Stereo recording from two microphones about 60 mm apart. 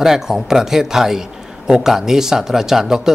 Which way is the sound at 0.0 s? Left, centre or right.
Centre.